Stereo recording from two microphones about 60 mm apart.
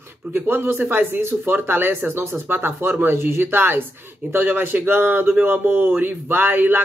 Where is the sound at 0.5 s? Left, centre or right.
Right.